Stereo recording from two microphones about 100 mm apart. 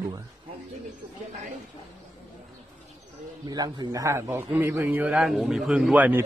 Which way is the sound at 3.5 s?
40° right (ahead or behind).